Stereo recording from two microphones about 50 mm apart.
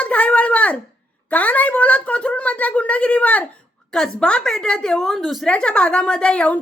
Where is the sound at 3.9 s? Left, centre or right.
Centre.